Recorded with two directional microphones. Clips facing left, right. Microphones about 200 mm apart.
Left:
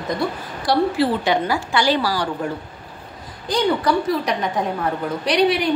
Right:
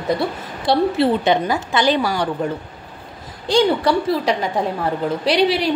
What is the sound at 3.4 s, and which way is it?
A woman's voice, 30° right (ahead or behind).